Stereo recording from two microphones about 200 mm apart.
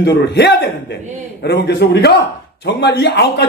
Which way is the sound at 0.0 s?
55° left (ahead or behind).